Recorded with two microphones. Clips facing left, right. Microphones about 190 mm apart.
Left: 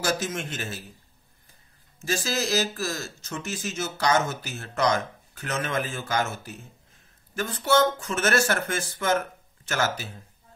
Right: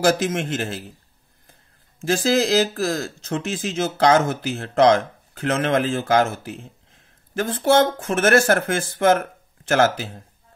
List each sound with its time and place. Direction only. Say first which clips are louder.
0.0 s a man's voice: right 9 dB; 90° right
2.0 s speech: right 9 dB; 55° right (ahead or behind)